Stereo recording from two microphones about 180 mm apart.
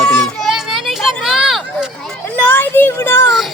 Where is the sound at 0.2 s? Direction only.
Centre (ahead or behind).